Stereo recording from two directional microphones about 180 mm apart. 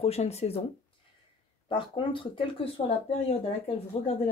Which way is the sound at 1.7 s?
30° left (ahead or behind).